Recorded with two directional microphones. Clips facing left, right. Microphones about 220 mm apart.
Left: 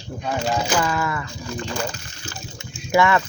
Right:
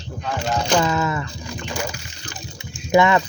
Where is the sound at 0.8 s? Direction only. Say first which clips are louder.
Right 2 dB; 20° right (ahead or behind).